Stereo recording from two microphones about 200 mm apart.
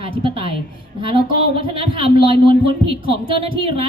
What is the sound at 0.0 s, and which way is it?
A woman's voice, 25° right (ahead or behind).